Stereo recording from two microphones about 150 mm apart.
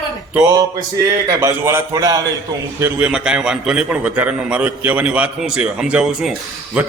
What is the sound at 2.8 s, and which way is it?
A man's voice, 10° right (ahead or behind).